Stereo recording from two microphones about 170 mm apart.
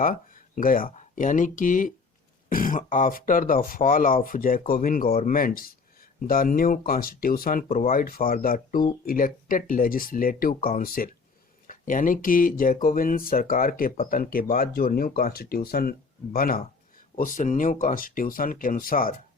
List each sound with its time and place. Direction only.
0.0 s speech: 55° left (ahead or behind)